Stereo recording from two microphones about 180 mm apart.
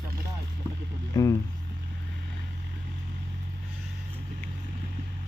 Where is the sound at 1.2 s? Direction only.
20° left (ahead or behind).